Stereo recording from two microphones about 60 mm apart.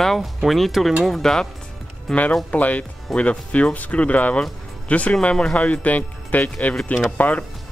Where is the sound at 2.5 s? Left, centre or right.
Left.